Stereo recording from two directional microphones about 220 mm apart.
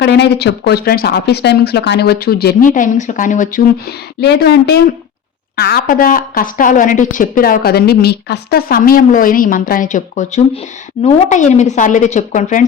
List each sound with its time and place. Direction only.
0.0 s speech: 50° left (ahead or behind)
4.2 s a woman's voice: 45° left (ahead or behind)